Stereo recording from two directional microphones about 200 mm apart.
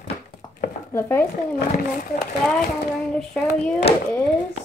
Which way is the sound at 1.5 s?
45° left (ahead or behind).